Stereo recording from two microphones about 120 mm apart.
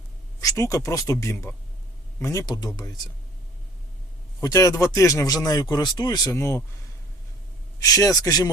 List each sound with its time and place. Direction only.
0.4 s speech: 25° left (ahead or behind)
4.4 s speech: 30° left (ahead or behind)
6.3 s speech: 20° left (ahead or behind)
7.8 s speech: 30° left (ahead or behind)